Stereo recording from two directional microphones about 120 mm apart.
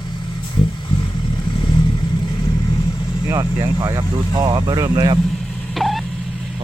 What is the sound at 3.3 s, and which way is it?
Vehicle, 30° right (ahead or behind).